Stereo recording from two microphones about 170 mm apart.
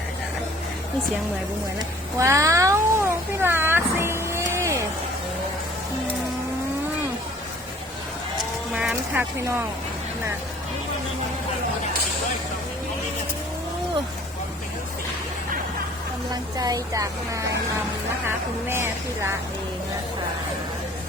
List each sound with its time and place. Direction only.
2.1 s cat: 20° right (ahead or behind)
8.7 s speech: 5° right (ahead or behind)
16.3 s speech: 20° right (ahead or behind)